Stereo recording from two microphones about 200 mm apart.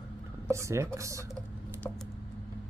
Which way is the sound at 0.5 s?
15° right (ahead or behind).